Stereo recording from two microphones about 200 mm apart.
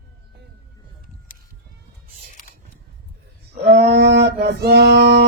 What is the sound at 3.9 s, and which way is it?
Female singing, 55° right (ahead or behind).